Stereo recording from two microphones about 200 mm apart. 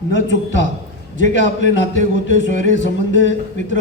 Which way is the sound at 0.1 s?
65° left (ahead or behind).